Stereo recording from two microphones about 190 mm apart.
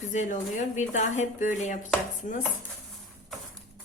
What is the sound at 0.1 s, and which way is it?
A woman's voice, 40° left (ahead or behind).